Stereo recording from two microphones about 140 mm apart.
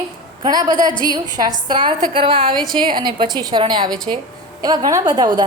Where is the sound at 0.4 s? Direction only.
25° right (ahead or behind).